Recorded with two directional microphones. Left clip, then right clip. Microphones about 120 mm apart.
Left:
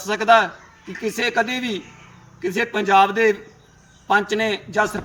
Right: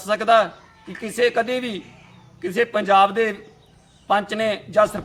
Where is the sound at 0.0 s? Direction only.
25° right (ahead or behind).